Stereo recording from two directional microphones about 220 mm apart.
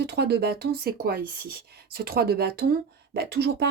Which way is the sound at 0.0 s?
50° right (ahead or behind).